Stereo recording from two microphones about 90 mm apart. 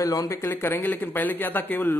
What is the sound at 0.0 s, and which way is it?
Speech, 40° left (ahead or behind).